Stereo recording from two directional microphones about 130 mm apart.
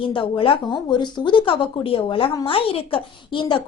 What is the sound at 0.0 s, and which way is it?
Speech, 40° left (ahead or behind).